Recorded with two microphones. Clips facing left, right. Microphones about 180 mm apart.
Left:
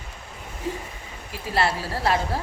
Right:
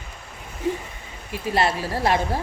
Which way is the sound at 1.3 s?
20° right (ahead or behind).